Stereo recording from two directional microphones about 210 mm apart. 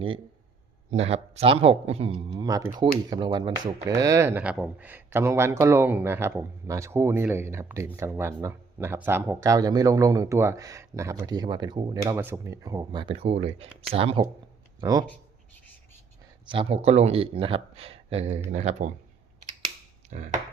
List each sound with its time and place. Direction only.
0.9 s speech: 30° right (ahead or behind)
16.5 s speech: 25° right (ahead or behind)
19.5 s a sound: 30° right (ahead or behind)